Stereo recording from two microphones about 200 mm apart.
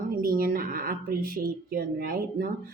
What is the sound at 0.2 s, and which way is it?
A woman's voice, 45° right (ahead or behind).